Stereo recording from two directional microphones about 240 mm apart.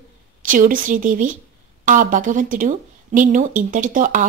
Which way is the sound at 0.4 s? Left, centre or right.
Right.